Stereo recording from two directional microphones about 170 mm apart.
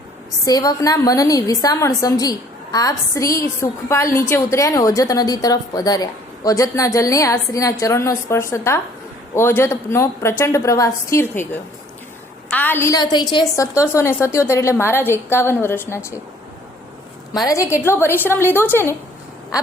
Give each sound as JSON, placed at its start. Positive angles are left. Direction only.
{"t": 0.4, "sound": "a woman's voice", "side_deg": 20}
{"t": 12.5, "sound": "a woman's voice", "side_deg": 10}
{"t": 17.3, "sound": "a woman's voice", "side_deg": 20}